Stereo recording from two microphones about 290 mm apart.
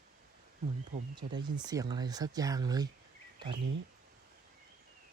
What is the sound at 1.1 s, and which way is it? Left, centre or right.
Speech, centre.